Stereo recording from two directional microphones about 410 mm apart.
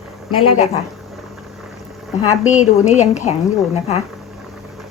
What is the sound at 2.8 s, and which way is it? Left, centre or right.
Speech, centre.